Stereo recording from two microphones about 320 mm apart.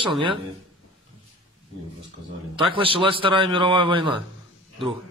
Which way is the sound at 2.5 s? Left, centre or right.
Centre.